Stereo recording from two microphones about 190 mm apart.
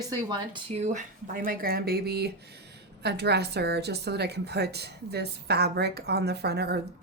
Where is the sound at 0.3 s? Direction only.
30° right (ahead or behind).